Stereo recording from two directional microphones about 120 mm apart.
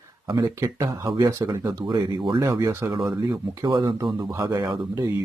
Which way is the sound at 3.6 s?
35° right (ahead or behind).